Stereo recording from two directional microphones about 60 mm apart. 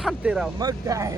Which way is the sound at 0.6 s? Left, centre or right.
Right.